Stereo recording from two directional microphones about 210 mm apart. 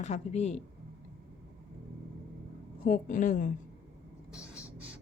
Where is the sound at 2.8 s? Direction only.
40° left (ahead or behind).